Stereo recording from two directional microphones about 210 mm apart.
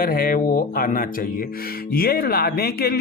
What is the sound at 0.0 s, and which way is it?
Speech, 45° left (ahead or behind).